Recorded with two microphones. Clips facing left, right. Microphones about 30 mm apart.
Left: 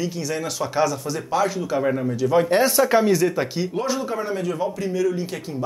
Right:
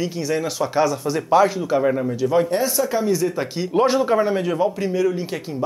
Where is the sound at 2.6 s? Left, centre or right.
Left.